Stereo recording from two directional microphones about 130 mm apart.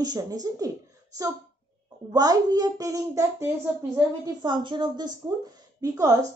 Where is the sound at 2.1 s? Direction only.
30° right (ahead or behind).